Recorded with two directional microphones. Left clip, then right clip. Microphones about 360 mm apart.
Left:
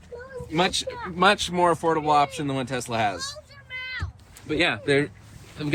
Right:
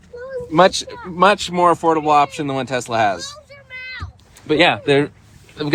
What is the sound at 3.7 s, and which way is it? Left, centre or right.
Cat, centre.